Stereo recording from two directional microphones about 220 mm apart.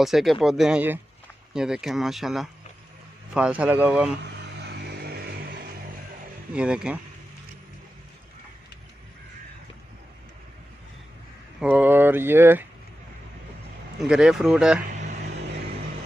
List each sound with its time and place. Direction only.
0.0 s speech: centre (ahead or behind)
4.2 s vehicle: 50° right (ahead or behind)
6.5 s speech: 5° right (ahead or behind)
11.6 s a sound: 10° right (ahead or behind)
14.0 s speech: 5° right (ahead or behind)